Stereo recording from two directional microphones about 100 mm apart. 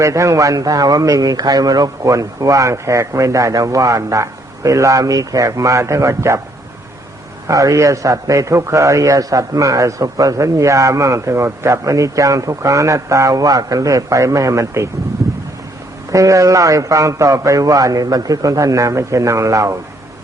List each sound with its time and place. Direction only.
0.0 s a man's voice: 30° right (ahead or behind)
7.4 s a man's voice: 35° right (ahead or behind)
16.1 s a man's voice: 30° right (ahead or behind)